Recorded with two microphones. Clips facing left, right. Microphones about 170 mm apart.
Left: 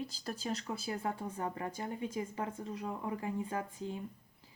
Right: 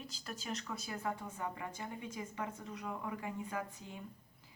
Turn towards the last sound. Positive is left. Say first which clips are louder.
# left 4 dB
turn(degrees=30)  # may be behind; listen again after turning